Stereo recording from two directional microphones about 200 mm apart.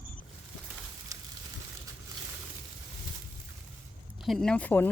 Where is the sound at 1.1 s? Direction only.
15° right (ahead or behind).